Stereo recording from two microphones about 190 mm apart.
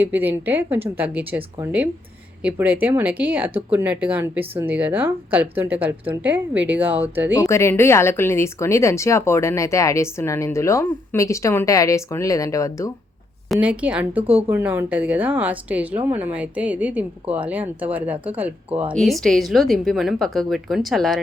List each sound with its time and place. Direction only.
0.0 s speech: 10° right (ahead or behind)
7.3 s speech: 15° left (ahead or behind)
13.5 s speech: 10° right (ahead or behind)
14.3 s speech: 30° right (ahead or behind)
14.5 s a woman's voice: 10° right (ahead or behind)